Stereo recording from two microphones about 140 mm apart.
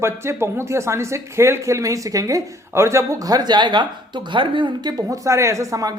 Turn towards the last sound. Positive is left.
turn(degrees=-20)  # may be behind; listen again after turning